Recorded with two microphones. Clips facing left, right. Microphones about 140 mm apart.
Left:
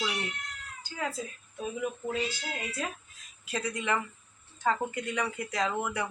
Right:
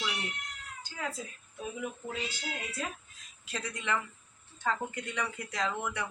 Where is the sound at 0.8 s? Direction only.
Centre (ahead or behind).